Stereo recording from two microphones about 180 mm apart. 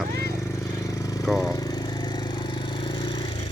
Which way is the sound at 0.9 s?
20° left (ahead or behind).